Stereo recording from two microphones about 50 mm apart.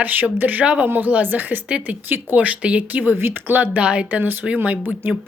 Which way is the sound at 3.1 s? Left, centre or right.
Right.